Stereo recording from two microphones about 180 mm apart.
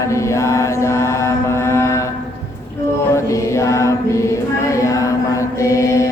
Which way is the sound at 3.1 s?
15° left (ahead or behind).